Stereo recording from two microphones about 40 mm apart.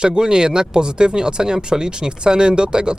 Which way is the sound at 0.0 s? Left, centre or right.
Centre.